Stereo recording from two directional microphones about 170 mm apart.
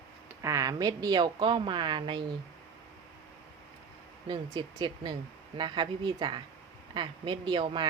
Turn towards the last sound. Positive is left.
turn(degrees=-30)  # may be behind; listen again after turning